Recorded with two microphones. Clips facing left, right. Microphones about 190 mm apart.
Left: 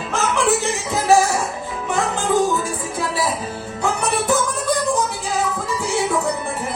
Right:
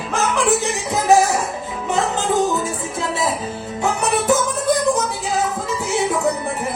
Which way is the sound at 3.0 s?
25° right (ahead or behind).